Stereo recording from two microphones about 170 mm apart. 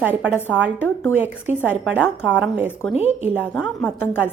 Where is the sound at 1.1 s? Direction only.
10° right (ahead or behind).